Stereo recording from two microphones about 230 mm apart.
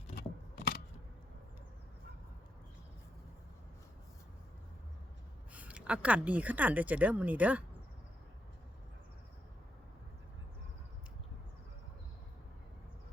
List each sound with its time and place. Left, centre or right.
0.2 s scissors: left
5.5 s speech: centre